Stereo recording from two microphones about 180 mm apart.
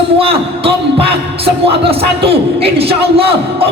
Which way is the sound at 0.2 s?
30° right (ahead or behind).